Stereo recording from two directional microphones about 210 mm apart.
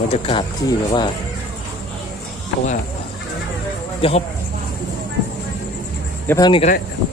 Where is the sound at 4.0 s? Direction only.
25° left (ahead or behind).